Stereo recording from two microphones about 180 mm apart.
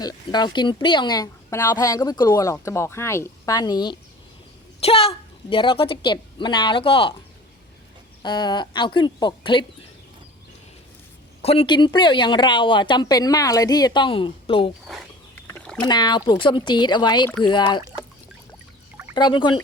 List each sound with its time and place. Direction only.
0.0 s speech: 25° left (ahead or behind)
8.2 s speech: 25° left (ahead or behind)
11.4 s speech: 30° left (ahead or behind)
15.6 s rowboat: 5° left (ahead or behind)
15.9 s speech: 25° left (ahead or behind)
19.1 s speech: 25° left (ahead or behind)